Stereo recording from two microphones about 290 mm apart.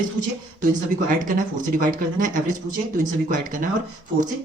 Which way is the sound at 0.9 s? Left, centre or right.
Right.